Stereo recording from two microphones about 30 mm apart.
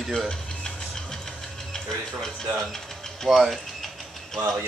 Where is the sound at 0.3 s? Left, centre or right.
Left.